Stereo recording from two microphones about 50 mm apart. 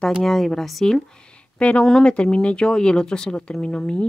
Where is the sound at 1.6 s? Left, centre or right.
Left.